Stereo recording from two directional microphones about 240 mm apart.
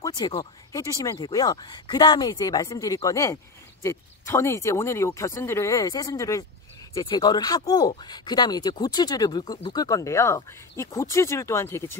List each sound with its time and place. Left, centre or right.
0.0 s speech: centre